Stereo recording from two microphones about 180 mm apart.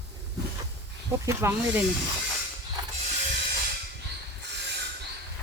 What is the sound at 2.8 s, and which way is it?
Mechanisms, 20° right (ahead or behind).